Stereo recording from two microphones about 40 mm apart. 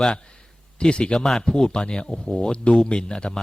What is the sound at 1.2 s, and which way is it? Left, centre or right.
A man's voice, centre.